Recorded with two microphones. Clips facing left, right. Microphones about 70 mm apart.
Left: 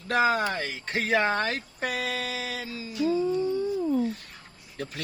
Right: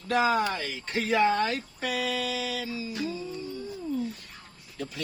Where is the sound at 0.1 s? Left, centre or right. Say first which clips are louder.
Left 1 dB; left.